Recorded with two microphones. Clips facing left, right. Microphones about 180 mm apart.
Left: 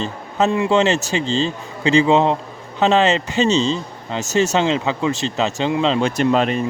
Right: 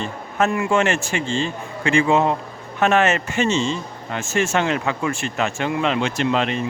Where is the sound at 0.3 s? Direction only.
20° left (ahead or behind).